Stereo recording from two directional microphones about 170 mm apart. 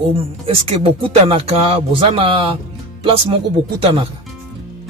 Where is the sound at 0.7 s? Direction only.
35° right (ahead or behind).